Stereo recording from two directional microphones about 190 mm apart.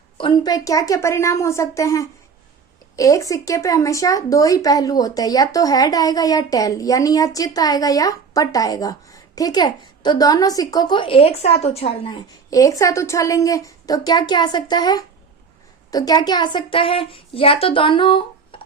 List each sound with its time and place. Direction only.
0.2 s a woman's voice: 25° left (ahead or behind)